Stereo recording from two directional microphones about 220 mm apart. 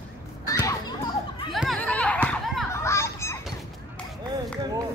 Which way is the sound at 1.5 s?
Centre (ahead or behind).